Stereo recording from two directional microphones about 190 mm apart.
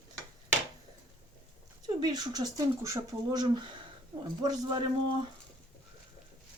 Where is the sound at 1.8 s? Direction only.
20° right (ahead or behind).